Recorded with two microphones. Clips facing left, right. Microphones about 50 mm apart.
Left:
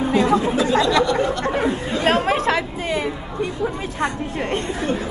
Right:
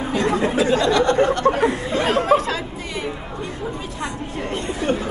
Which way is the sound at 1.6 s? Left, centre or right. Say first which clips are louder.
Right 2 dB; right.